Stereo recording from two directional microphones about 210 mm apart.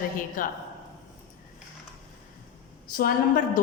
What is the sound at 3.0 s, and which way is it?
Speech, 45° left (ahead or behind).